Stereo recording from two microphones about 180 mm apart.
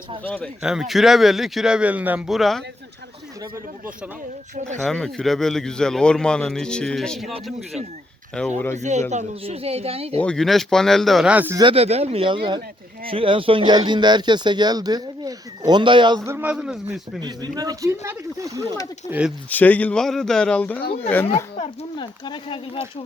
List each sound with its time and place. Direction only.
0.2 s a man's voice: 10° left (ahead or behind)
0.6 s speech: 5° right (ahead or behind)
3.4 s speech: 10° right (ahead or behind)
4.8 s speech: centre (ahead or behind)
8.4 s a man's voice: 10° left (ahead or behind)
8.7 s speech: 40° right (ahead or behind)
10.2 s speech: 5° left (ahead or behind)
11.6 s speech: 35° right (ahead or behind); by 17.0 s 5° right (ahead or behind)
17.2 s speech: 25° right (ahead or behind)
19.5 s a man's voice: 10° left (ahead or behind)
21.8 s speech: 25° left (ahead or behind)